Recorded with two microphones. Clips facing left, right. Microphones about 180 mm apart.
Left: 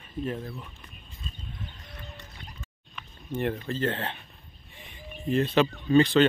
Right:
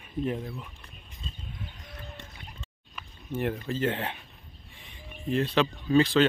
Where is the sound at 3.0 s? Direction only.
5° right (ahead or behind).